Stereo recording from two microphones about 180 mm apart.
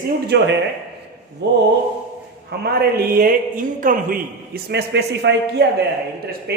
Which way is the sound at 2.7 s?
55° right (ahead or behind).